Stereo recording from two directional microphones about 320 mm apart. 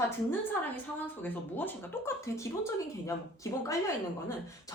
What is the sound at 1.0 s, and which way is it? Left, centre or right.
Speech, centre.